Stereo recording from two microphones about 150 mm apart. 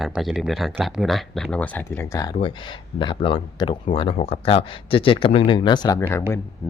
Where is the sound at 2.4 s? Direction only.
30° left (ahead or behind).